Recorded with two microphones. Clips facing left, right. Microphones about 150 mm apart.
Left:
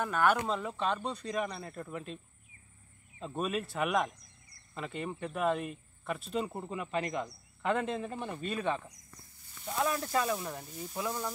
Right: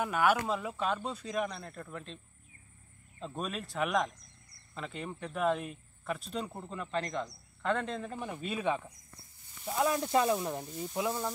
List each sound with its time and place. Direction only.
0.0 s speech: 5° right (ahead or behind)
3.2 s speech: 5° left (ahead or behind)
8.3 s speech: 5° right (ahead or behind)